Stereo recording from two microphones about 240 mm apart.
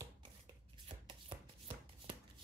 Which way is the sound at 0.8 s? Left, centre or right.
Right.